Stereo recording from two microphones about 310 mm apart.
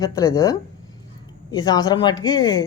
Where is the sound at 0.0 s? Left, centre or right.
Centre.